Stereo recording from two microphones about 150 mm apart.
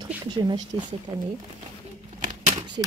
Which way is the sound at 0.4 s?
30° right (ahead or behind).